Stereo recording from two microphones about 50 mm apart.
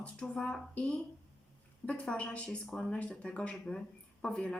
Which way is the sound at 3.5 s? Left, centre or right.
Centre.